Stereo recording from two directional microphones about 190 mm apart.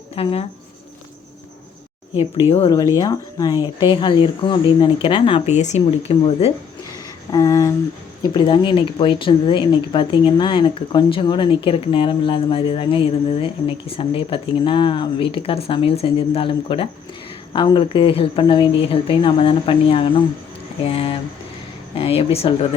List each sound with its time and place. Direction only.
0.2 s speech: 30° left (ahead or behind)
2.5 s speech: 30° left (ahead or behind)
2.7 s speech: 20° left (ahead or behind)
7.3 s speech: 20° left (ahead or behind)